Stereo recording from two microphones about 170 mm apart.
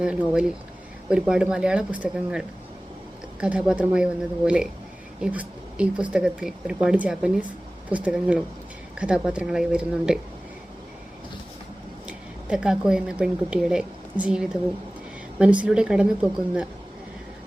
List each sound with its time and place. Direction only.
0.0 s speech: 5° right (ahead or behind)
3.4 s speech: 5° right (ahead or behind)
12.0 s speech: 5° right (ahead or behind)